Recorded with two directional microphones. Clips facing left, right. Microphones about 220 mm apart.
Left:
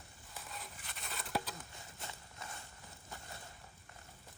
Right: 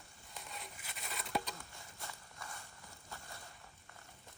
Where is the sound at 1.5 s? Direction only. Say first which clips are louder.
Left 2 dB; 20° left (ahead or behind).